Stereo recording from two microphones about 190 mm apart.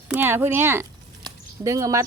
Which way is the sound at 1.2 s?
15° right (ahead or behind).